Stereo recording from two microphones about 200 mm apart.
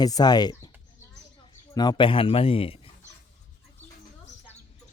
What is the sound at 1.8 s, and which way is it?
Speech, 20° left (ahead or behind).